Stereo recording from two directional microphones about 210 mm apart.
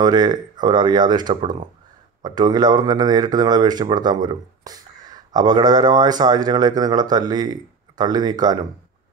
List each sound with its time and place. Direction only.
0.0 s speech: 20° right (ahead or behind)